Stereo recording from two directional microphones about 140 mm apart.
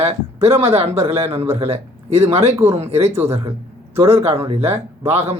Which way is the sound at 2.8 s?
50° right (ahead or behind).